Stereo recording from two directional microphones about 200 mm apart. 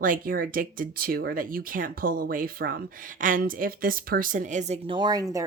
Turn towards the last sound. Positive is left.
turn(degrees=-15)  # may be behind; listen again after turning